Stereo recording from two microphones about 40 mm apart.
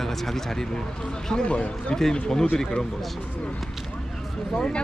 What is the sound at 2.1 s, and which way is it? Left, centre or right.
Speech, centre.